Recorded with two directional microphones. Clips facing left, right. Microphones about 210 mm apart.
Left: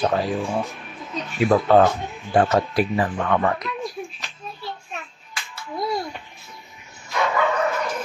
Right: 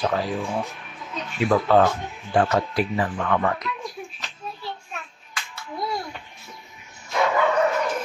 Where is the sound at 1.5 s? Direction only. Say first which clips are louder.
Left 2 dB; 25° left (ahead or behind).